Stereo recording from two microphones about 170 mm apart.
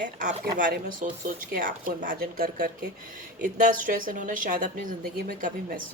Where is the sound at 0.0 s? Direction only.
50° right (ahead or behind).